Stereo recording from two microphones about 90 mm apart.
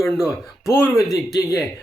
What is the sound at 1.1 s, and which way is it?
Speech, 45° left (ahead or behind).